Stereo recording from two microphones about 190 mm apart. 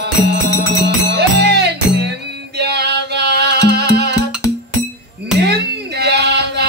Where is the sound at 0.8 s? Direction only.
60° right (ahead or behind).